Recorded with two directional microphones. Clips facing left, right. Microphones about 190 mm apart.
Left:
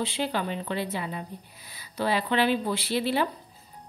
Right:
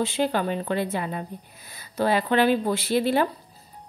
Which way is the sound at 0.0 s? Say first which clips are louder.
Right 5 dB; 45° right (ahead or behind).